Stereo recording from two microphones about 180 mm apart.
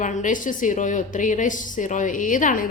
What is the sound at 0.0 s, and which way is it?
A woman's voice, 45° left (ahead or behind).